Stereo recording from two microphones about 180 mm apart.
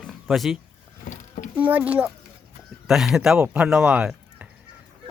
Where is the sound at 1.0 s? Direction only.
45° left (ahead or behind).